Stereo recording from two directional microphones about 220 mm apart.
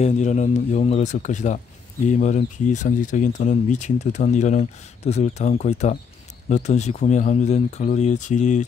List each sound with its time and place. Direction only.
0.0 s speech: 35° left (ahead or behind)